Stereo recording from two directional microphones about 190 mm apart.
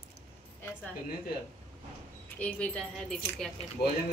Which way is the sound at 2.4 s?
5° left (ahead or behind).